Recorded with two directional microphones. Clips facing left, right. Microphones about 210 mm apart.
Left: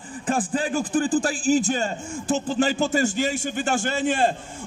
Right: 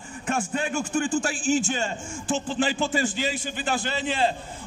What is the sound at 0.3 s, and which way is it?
A man's voice, 35° left (ahead or behind).